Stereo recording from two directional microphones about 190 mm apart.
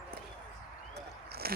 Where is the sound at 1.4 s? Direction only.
55° right (ahead or behind).